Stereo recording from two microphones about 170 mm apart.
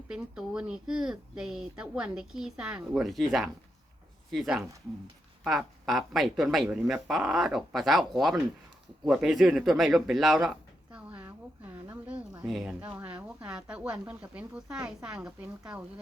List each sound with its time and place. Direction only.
0.1 s speech: 5° right (ahead or behind)
10.9 s a sound: 10° right (ahead or behind)
11.9 s a woman's voice: 5° right (ahead or behind)